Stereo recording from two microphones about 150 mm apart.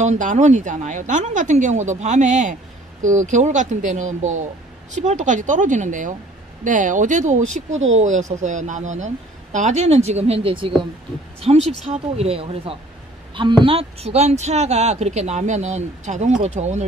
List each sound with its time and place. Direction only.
0.0 s speech: 55° right (ahead or behind)